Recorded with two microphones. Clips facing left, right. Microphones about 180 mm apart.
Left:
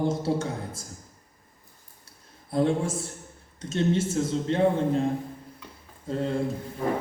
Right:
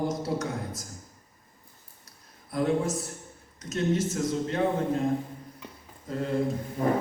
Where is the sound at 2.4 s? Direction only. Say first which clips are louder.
Left 2 dB; 30° left (ahead or behind).